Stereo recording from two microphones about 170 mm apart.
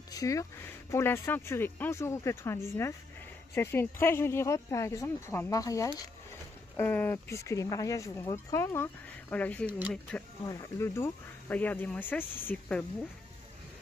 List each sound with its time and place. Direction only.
0.1 s speech: 20° left (ahead or behind)
9.7 s speech: 10° right (ahead or behind)
10.4 s speech: 20° left (ahead or behind)